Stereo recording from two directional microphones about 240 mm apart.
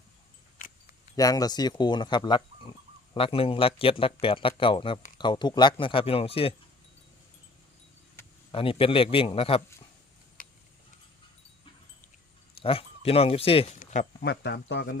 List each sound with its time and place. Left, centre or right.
1.1 s speech: centre
8.2 s a sound: centre
8.5 s speech: left
12.6 s speech: left